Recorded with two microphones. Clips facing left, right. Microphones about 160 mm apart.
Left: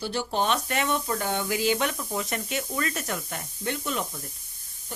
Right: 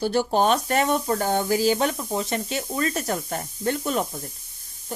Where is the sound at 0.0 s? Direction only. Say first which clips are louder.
Right 7 dB; 45° right (ahead or behind).